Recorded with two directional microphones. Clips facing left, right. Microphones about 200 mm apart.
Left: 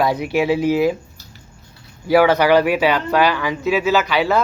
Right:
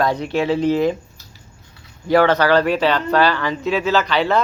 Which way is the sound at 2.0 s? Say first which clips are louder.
Left 1 dB; 10° left (ahead or behind).